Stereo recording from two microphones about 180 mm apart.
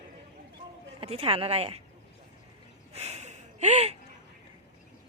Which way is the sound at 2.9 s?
35° right (ahead or behind).